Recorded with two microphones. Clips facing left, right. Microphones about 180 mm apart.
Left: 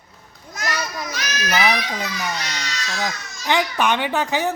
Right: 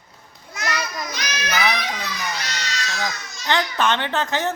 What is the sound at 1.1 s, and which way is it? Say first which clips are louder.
Children playing: left 1 dB; 15° right (ahead or behind).